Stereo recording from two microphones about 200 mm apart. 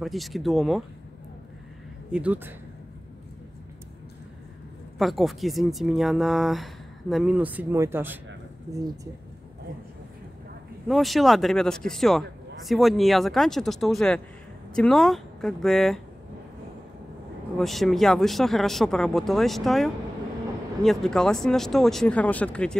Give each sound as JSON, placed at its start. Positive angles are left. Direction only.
{"t": 0.0, "sound": "speech", "side_deg": 0}
{"t": 2.1, "sound": "speech", "side_deg": -10}
{"t": 4.9, "sound": "speech", "side_deg": 0}
{"t": 10.9, "sound": "speech", "side_deg": 0}
{"t": 17.6, "sound": "speech", "side_deg": 0}